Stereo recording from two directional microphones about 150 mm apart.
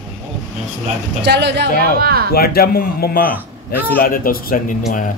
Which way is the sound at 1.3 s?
90° right.